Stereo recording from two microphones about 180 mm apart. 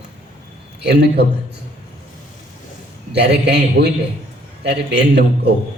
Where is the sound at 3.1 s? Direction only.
65° right (ahead or behind).